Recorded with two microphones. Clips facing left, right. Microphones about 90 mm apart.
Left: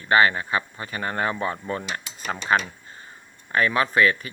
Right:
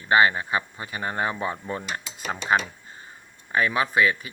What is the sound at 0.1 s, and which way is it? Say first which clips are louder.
A man's voice: even; 15° right (ahead or behind).